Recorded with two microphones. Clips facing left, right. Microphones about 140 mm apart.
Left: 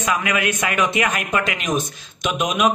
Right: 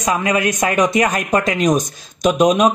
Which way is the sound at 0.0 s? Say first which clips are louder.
Right 4 dB; 35° right (ahead or behind).